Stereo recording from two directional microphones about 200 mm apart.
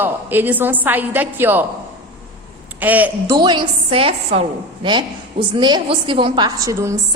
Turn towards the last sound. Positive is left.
turn(degrees=-15)  # may be behind; listen again after turning